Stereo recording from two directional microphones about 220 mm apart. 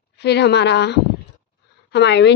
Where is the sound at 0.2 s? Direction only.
50° left (ahead or behind).